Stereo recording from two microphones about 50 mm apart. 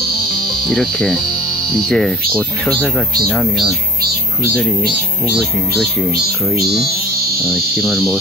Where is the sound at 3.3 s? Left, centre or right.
Centre.